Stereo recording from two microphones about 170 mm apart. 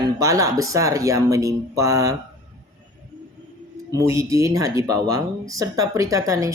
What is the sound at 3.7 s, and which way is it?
Speech, 20° right (ahead or behind).